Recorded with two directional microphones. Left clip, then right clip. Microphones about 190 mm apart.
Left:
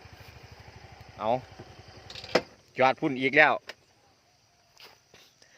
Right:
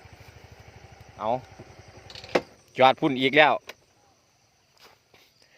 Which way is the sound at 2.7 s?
20° right (ahead or behind).